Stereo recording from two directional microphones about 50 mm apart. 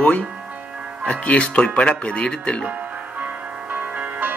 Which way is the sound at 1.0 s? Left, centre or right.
Left.